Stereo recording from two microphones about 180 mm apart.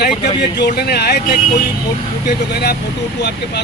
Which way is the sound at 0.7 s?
65° left (ahead or behind).